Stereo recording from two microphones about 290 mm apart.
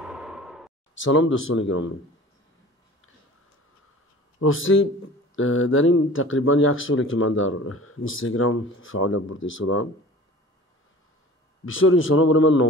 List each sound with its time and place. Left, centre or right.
0.0 s a sound: centre
0.9 s speech: left
4.4 s speech: left
11.6 s speech: left